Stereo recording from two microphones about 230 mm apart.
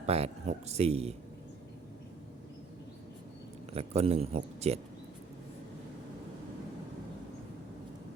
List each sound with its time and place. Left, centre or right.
0.0 s speech: right
3.7 s speech: right